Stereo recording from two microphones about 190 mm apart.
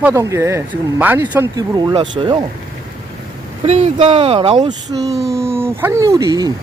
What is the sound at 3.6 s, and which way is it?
Speech, 35° right (ahead or behind).